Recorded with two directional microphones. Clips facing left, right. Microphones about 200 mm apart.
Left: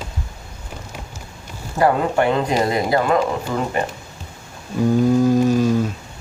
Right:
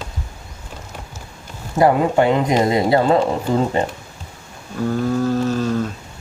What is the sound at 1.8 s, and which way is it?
Speech, 20° right (ahead or behind).